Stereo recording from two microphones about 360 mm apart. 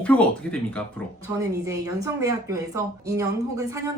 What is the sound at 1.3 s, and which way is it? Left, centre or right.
Speech, centre.